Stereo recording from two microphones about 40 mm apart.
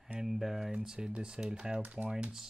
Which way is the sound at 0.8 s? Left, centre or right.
Centre.